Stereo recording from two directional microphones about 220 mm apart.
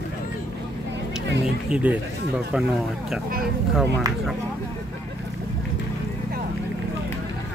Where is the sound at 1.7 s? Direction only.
5° right (ahead or behind).